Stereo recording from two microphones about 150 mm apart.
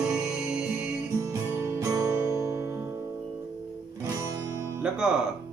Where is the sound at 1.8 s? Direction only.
25° right (ahead or behind).